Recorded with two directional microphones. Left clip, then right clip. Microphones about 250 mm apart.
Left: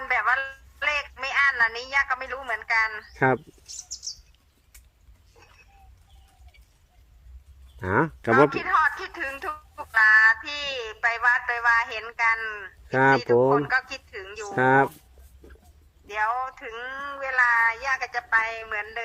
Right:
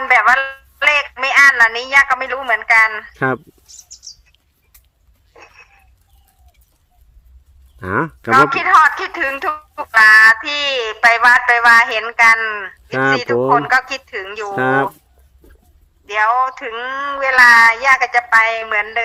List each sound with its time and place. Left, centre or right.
0.0 s telephone: right
5.3 s a sound: right
7.8 s a woman's voice: right
16.0 s a woman's voice: right